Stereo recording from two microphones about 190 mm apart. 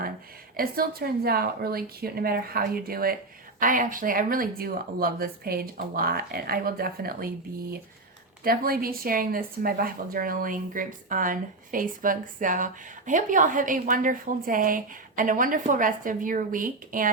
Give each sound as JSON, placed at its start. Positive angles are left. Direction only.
{"t": 0.5, "sound": "speech", "side_deg": -50}
{"t": 8.4, "sound": "speech", "side_deg": -50}